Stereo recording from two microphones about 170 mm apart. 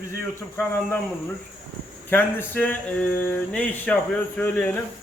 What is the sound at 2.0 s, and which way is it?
Speech, 10° left (ahead or behind).